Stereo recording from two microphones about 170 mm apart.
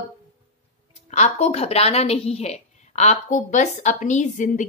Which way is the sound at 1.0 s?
40° left (ahead or behind).